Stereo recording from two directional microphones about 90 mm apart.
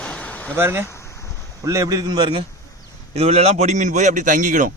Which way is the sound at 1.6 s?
40° right (ahead or behind).